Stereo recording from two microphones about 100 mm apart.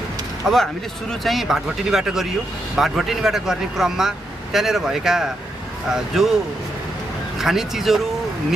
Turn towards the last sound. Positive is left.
turn(degrees=-5)  # may be behind; listen again after turning